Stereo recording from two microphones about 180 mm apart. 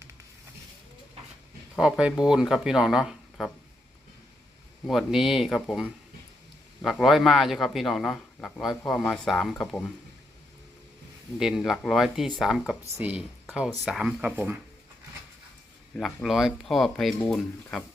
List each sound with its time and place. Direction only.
1.8 s a man's voice: 5° right (ahead or behind)
4.9 s a man's voice: centre (ahead or behind)
11.3 s a man's voice: centre (ahead or behind)
16.0 s a man's voice: centre (ahead or behind)